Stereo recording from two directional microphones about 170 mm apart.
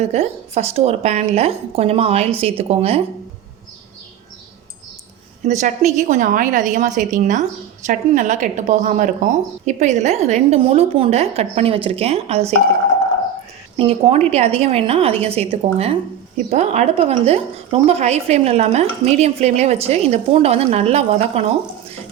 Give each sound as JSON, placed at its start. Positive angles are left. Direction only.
{"t": 0.0, "sound": "a woman's voice", "side_deg": -40}
{"t": 5.5, "sound": "a woman's voice", "side_deg": -45}
{"t": 13.7, "sound": "a woman's voice", "side_deg": -35}